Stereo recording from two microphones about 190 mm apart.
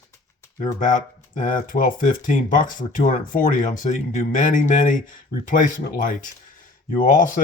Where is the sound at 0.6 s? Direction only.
40° left (ahead or behind).